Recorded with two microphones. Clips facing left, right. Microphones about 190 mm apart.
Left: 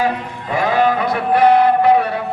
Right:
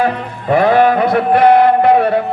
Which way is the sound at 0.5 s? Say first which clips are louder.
Right 6 dB; 55° right (ahead or behind).